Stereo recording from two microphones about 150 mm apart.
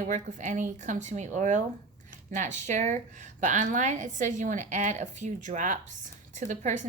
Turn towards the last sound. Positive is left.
turn(degrees=-50)  # may be behind; listen again after turning